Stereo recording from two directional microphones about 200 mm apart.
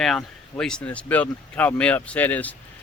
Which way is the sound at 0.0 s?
5° left (ahead or behind).